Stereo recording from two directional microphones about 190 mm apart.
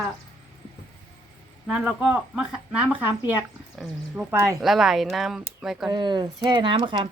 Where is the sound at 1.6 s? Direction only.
5° right (ahead or behind).